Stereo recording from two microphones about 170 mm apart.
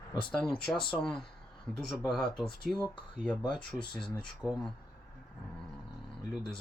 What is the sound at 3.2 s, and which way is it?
Speech, 5° left (ahead or behind).